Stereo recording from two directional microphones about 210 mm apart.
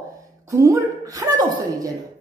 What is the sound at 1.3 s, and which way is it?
Speech, 40° right (ahead or behind).